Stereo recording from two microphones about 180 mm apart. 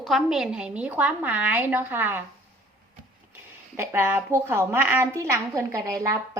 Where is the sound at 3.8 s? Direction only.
15° right (ahead or behind).